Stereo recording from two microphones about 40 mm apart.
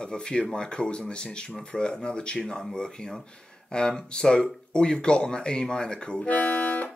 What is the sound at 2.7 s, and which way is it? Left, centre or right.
Speech, centre.